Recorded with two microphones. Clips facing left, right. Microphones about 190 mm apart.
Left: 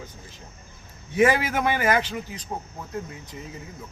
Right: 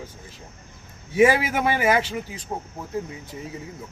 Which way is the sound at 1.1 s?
5° right (ahead or behind).